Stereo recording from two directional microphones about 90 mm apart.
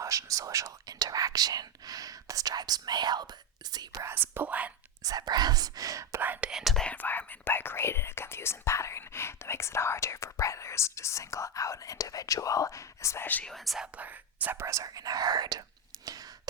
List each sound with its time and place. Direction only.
0.0 s speech: 35° right (ahead or behind)
4.0 s speech: 25° right (ahead or behind)
5.0 s speech: 50° right (ahead or behind)
6.2 s speech: 20° right (ahead or behind)
6.5 s speech: 5° right (ahead or behind)
6.9 s speech: 20° left (ahead or behind)
13.4 s speech: centre (ahead or behind)
13.8 s speech: 15° right (ahead or behind); by 15.6 s 50° right (ahead or behind)